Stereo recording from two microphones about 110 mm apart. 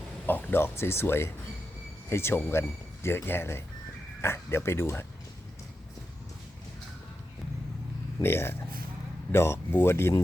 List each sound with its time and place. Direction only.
0.3 s speech: 20° left (ahead or behind)
8.2 s speech: 20° left (ahead or behind)